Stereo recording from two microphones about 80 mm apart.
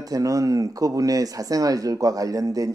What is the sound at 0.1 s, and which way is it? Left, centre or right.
Speech, right.